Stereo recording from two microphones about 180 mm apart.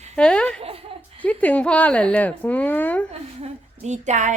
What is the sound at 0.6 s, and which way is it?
Chuckle, 30° right (ahead or behind).